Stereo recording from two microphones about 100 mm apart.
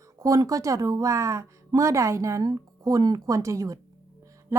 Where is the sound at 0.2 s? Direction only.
35° right (ahead or behind).